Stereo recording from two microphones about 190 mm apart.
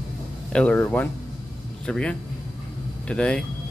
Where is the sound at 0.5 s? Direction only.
5° left (ahead or behind).